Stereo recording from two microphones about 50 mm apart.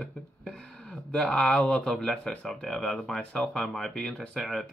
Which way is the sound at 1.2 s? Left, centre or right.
Centre.